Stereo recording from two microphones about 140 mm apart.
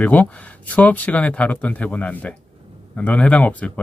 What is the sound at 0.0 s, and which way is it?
Speech, 10° left (ahead or behind).